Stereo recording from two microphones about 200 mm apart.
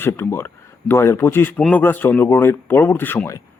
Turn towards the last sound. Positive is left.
turn(degrees=15)  # may be behind; listen again after turning